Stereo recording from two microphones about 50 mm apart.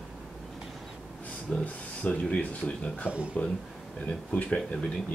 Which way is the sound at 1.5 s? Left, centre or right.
Left.